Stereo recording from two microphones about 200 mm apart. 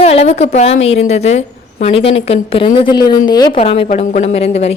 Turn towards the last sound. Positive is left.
turn(degrees=30)  # may be behind; listen again after turning